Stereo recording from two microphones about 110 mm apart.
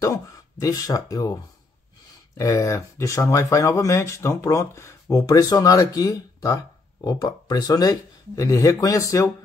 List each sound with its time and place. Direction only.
0.0 s speech: 30° left (ahead or behind)